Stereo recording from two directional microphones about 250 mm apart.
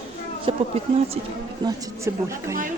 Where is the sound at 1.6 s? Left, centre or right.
Centre.